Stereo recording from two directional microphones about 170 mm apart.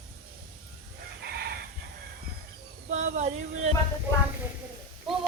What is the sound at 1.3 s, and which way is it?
Chicken, 70° right (ahead or behind).